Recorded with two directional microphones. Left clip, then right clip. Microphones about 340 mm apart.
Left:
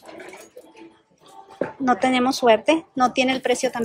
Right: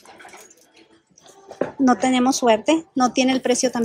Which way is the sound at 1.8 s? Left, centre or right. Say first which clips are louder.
Right 1 dB; centre.